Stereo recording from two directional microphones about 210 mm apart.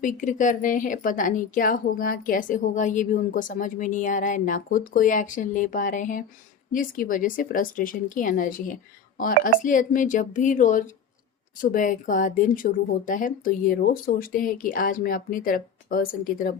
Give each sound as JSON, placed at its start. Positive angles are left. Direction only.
{"t": 0.0, "sound": "a woman's voice", "side_deg": 35}